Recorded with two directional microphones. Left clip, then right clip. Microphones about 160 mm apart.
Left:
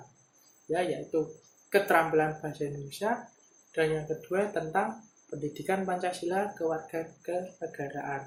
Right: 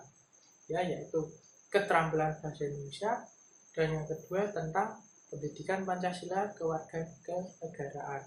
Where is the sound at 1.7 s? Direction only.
60° left (ahead or behind).